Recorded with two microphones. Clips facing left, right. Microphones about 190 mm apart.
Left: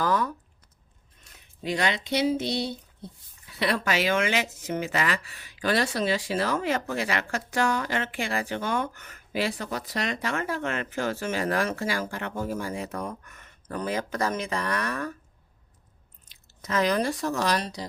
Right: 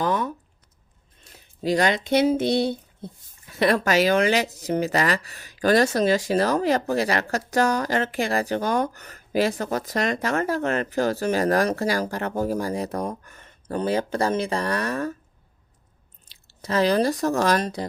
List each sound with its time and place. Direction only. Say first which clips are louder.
0.0 s a sound: right 2 dB; 20° right (ahead or behind)
1.2 s speech: right 7 dB; 35° right (ahead or behind)
16.2 s speech: right 4 dB; 30° right (ahead or behind); by 17.8 s 50° right (ahead or behind)